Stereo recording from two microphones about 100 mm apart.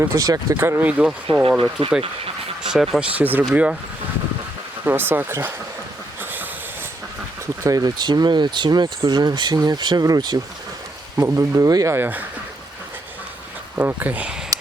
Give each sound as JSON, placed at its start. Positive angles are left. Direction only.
{"t": 0.0, "sound": "speech", "side_deg": -35}
{"t": 1.8, "sound": "speech", "side_deg": -75}
{"t": 2.6, "sound": "speech", "side_deg": 0}
{"t": 3.0, "sound": "speech", "side_deg": -15}
{"t": 4.9, "sound": "speech", "side_deg": -20}
{"t": 7.6, "sound": "speech", "side_deg": -35}
{"t": 11.9, "sound": "speech", "side_deg": -20}
{"t": 13.7, "sound": "speech", "side_deg": -15}